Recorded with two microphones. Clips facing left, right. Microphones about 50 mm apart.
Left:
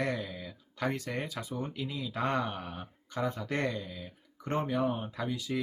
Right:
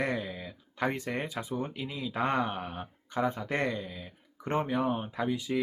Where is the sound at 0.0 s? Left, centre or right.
Right.